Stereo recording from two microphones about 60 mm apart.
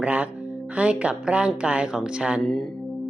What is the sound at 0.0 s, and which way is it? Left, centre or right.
Speech, right.